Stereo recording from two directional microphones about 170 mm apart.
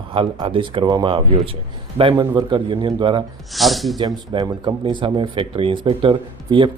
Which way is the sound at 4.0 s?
25° right (ahead or behind).